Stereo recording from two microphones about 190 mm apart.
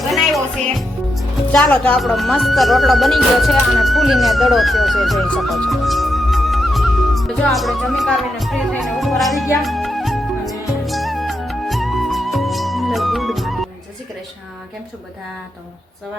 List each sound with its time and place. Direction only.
0.1 s speech: centre (ahead or behind)
10.8 s music: centre (ahead or behind)